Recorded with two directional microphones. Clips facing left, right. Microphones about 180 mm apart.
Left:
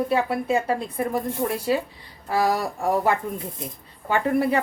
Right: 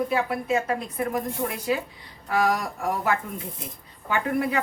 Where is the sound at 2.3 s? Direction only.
35° left (ahead or behind).